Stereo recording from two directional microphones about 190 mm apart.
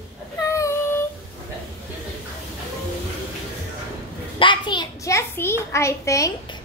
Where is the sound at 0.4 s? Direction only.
15° left (ahead or behind).